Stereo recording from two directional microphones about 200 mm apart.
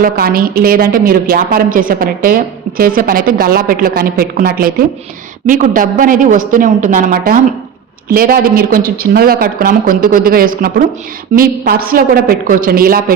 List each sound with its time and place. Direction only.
0.0 s a woman's voice: 50° right (ahead or behind)